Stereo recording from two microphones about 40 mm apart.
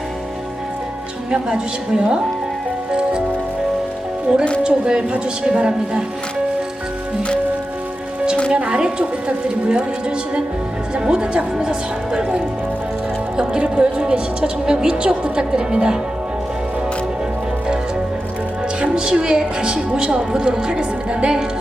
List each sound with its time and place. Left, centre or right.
1.3 s speech: right
4.3 s speech: right
8.5 s speech: right
10.9 s speech: right
13.4 s speech: right
18.9 s speech: right